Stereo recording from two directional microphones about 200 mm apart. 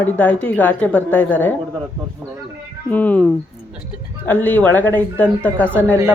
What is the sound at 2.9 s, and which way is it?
Speech, 10° left (ahead or behind).